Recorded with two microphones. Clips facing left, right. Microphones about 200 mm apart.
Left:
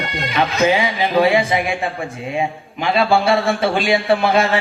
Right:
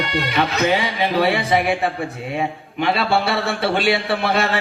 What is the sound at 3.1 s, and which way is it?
Music, 60° right (ahead or behind).